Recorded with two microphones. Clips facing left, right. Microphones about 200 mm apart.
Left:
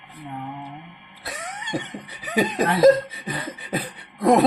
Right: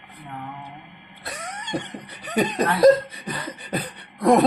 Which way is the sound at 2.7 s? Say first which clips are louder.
Even; centre (ahead or behind).